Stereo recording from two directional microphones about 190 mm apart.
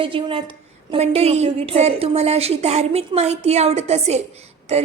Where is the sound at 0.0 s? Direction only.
25° right (ahead or behind).